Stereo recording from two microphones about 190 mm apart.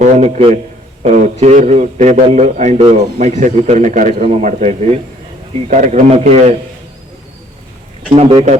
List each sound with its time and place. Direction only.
0.0 s a man's voice: 35° right (ahead or behind)
8.1 s a man's voice: 30° right (ahead or behind)